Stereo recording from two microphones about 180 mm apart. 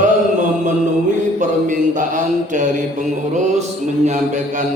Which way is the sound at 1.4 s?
45° right (ahead or behind).